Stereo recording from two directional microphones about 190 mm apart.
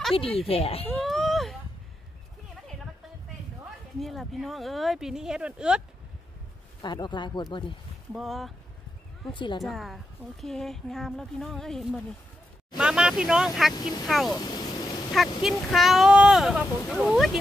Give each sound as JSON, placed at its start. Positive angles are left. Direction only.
{"t": 0.1, "sound": "speech", "side_deg": 30}
{"t": 0.8, "sound": "a sound", "side_deg": 0}
{"t": 4.0, "sound": "a woman's voice", "side_deg": 0}
{"t": 6.8, "sound": "speech", "side_deg": 25}
{"t": 8.1, "sound": "a woman's voice", "side_deg": 0}
{"t": 9.3, "sound": "speech", "side_deg": 25}
{"t": 9.6, "sound": "a woman's voice", "side_deg": 0}
{"t": 14.3, "sound": "a sound", "side_deg": 20}
{"t": 15.1, "sound": "a woman's voice", "side_deg": 0}